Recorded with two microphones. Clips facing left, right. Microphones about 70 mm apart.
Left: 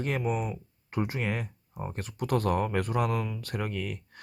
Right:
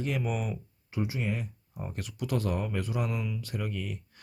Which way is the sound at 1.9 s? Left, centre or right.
Left.